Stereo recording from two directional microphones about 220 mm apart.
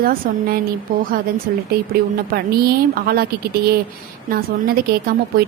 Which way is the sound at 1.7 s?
45° right (ahead or behind).